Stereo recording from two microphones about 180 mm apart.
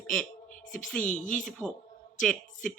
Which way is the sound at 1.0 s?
45° left (ahead or behind).